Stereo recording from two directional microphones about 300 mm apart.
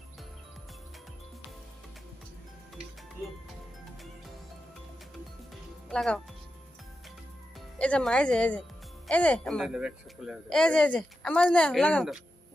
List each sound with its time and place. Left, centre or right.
5.9 s a woman's voice: centre
7.8 s a man's voice: centre